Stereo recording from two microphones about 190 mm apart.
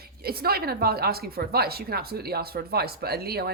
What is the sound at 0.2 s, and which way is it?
A woman's voice, 55° right (ahead or behind).